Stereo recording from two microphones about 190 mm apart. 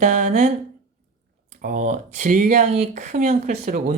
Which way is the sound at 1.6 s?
40° right (ahead or behind).